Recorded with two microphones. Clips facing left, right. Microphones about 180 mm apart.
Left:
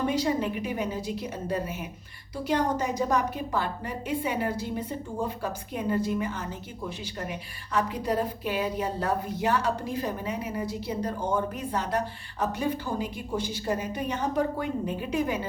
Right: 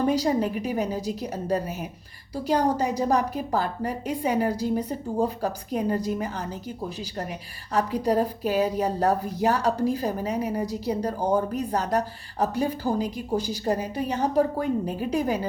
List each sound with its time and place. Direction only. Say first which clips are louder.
0.0 s a woman's voice: right 4 dB; 40° right (ahead or behind)